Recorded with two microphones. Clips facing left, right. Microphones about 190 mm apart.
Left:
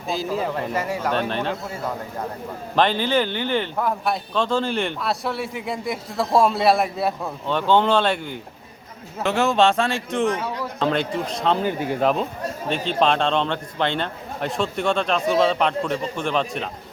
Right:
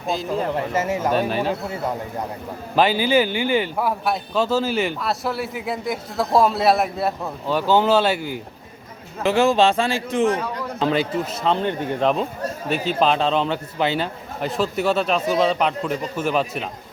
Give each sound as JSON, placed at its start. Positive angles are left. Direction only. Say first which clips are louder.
{"t": 0.1, "sound": "speech", "louder": "right 1 dB", "side_deg": 0}
{"t": 0.5, "sound": "speech", "louder": "right 3 dB", "side_deg": -20}
{"t": 1.1, "sound": "speech", "louder": "right 3 dB", "side_deg": -5}
{"t": 2.7, "sound": "speech", "louder": "right 2 dB", "side_deg": -5}
{"t": 12.6, "sound": "speech", "louder": "right 1 dB", "side_deg": -5}